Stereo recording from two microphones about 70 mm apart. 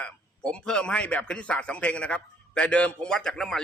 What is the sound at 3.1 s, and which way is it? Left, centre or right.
Speech, centre.